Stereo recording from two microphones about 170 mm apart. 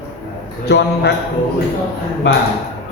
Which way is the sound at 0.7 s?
80° left.